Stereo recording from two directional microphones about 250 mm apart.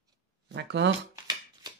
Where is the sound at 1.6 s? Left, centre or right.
Centre.